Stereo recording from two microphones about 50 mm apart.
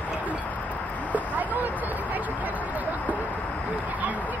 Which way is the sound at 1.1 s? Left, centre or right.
Right.